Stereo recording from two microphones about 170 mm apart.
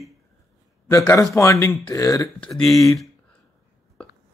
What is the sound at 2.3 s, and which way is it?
Speech, 5° left (ahead or behind).